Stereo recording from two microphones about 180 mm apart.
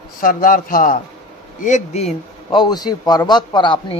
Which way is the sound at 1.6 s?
40° left (ahead or behind).